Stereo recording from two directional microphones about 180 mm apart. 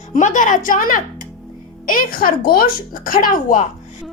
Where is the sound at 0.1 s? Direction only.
45° left (ahead or behind).